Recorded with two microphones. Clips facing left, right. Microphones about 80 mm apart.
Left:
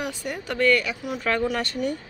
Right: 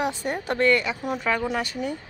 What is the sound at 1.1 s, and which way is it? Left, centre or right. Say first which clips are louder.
Speech: left 2 dB; centre.